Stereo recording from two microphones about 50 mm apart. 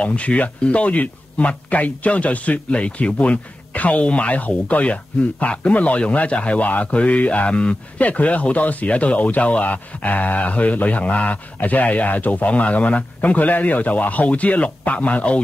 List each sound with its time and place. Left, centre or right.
0.0 s speech: left